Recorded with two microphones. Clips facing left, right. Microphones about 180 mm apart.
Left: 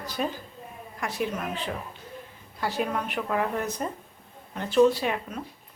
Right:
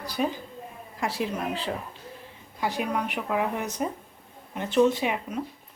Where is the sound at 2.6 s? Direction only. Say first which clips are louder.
Right 1 dB; 15° right (ahead or behind).